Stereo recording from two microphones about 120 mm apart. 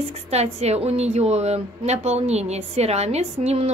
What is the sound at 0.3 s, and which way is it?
A woman's voice, 65° right (ahead or behind).